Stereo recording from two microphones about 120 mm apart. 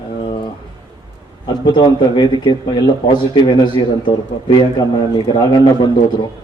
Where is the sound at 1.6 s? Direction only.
40° left (ahead or behind).